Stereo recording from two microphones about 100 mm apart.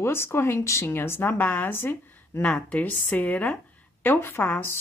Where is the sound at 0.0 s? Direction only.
25° left (ahead or behind).